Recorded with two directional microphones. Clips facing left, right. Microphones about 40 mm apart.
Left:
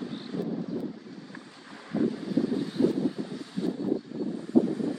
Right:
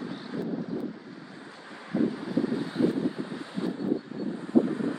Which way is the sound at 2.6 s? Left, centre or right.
Centre.